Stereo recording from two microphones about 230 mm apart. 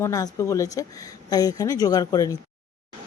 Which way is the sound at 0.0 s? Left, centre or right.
Centre.